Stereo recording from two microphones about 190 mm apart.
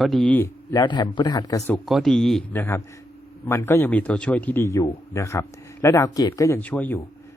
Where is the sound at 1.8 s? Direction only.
Centre (ahead or behind).